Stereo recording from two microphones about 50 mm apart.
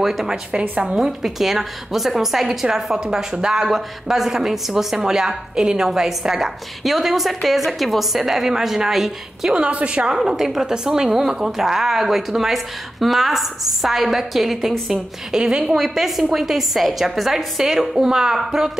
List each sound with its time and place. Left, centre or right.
0.0 s a woman's voice: centre
0.5 s a woman's voice: right
0.9 s a woman's voice: centre
9.5 s a woman's voice: right
10.1 s a woman's voice: centre